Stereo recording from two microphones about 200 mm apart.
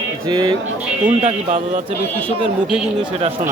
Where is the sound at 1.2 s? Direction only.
35° right (ahead or behind).